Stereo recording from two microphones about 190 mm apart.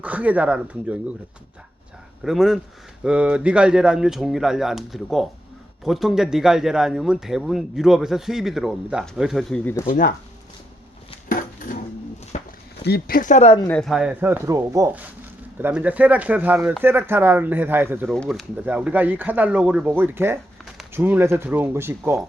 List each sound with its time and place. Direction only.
0.0 s speech: 10° right (ahead or behind)
2.2 s a man's voice: centre (ahead or behind)
9.8 s speech: 50° left (ahead or behind)
11.3 s a sound: 45° left (ahead or behind)
12.3 s a sound: 35° left (ahead or behind)
12.8 s speech: 55° left (ahead or behind); by 13.6 s 35° left (ahead or behind)
13.6 s speech: 10° left (ahead or behind); by 18.1 s 10° right (ahead or behind)
18.1 s speech: centre (ahead or behind)